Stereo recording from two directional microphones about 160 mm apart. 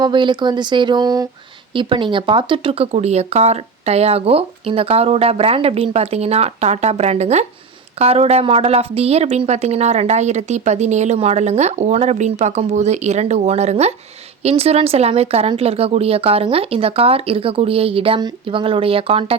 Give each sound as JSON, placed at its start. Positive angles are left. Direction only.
{"t": 0.0, "sound": "speech", "side_deg": -30}